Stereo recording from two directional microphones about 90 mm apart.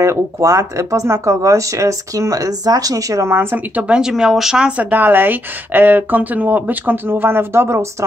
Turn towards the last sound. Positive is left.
turn(degrees=-30)  # may be behind; listen again after turning